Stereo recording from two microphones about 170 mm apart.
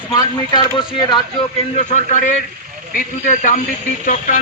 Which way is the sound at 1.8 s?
45° left (ahead or behind).